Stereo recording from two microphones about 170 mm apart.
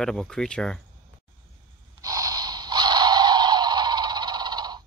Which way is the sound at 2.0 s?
20° right (ahead or behind).